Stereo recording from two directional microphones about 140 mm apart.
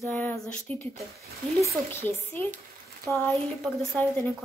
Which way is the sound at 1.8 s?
15° left (ahead or behind).